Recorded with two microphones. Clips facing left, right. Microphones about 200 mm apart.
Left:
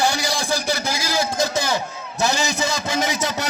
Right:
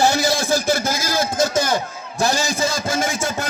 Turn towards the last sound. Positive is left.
turn(degrees=-50)  # may be behind; listen again after turning